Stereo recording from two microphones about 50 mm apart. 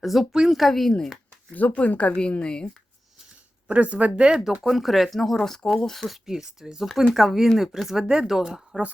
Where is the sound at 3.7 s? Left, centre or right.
Right.